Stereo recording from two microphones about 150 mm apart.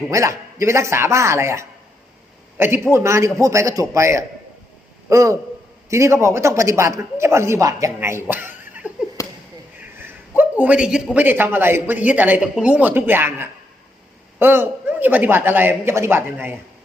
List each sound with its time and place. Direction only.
0.1 s a woman's voice: 20° right (ahead or behind)
9.2 s basketball bounce: 20° left (ahead or behind)
10.6 s speech: 10° right (ahead or behind)